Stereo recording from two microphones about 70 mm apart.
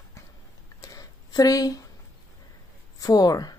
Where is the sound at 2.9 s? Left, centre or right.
Left.